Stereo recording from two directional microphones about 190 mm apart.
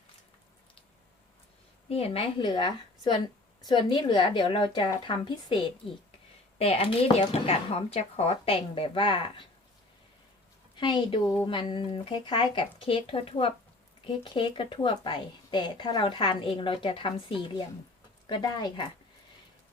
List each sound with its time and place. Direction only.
1.9 s a woman's voice: 30° left (ahead or behind)
10.8 s a woman's voice: 25° left (ahead or behind)